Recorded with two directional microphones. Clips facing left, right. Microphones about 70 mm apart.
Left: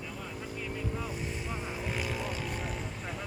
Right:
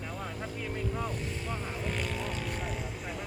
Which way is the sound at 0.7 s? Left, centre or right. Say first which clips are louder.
Right 3 dB; centre.